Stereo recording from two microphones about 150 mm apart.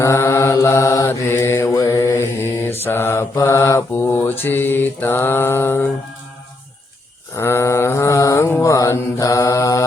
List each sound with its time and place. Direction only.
0.0 s mantra: 20° left (ahead or behind)
7.3 s mantra: 20° left (ahead or behind)